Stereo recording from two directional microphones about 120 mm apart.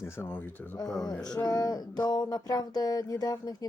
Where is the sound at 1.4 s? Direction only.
35° left (ahead or behind).